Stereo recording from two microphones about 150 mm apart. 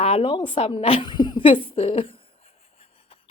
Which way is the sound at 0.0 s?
40° left (ahead or behind).